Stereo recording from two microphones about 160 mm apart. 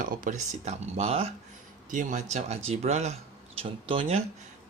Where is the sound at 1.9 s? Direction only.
50° right (ahead or behind); by 4.2 s 35° right (ahead or behind).